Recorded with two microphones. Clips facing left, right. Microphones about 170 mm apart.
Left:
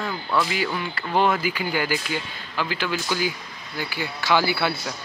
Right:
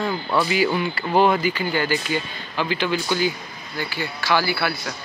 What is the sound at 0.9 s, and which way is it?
Speech, 5° right (ahead or behind).